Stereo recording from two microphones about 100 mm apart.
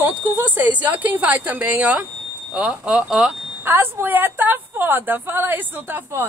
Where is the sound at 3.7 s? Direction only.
20° right (ahead or behind).